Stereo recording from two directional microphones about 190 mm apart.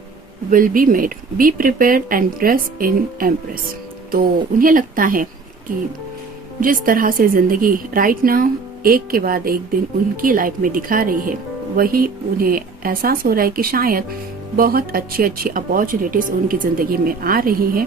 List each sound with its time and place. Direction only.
0.5 s speech: 45° right (ahead or behind)
6.8 s speech: 45° right (ahead or behind)